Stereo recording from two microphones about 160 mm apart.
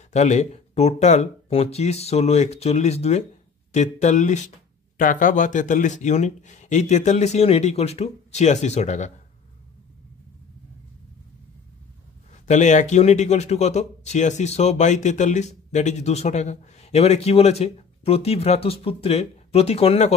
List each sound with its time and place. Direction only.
0.1 s a man's voice: 45° left (ahead or behind)
12.3 s a man's voice: 45° left (ahead or behind)